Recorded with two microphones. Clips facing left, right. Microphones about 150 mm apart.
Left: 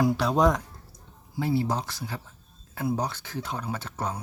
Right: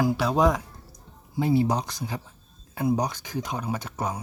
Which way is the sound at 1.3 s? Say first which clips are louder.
Right 4 dB; 20° right (ahead or behind).